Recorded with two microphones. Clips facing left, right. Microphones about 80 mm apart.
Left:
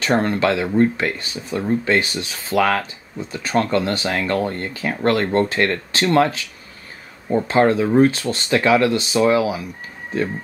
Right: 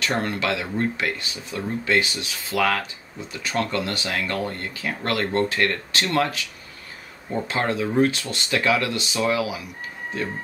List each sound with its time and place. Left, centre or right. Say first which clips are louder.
0.0 s speech: left 7 dB; left
7.4 s speech: left 9 dB; left